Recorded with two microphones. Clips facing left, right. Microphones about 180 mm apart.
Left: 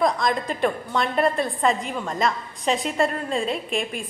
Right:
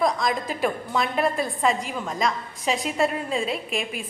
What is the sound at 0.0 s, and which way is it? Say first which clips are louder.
A woman's voice: left 1 dB; centre (ahead or behind).